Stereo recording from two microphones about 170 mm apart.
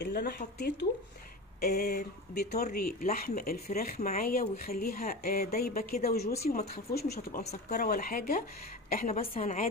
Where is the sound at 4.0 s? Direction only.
50° left (ahead or behind).